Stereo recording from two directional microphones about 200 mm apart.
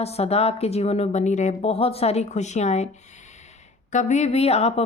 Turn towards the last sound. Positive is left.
turn(degrees=30)  # may be behind; listen again after turning